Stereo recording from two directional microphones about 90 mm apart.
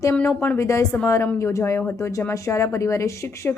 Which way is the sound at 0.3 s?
25° left (ahead or behind).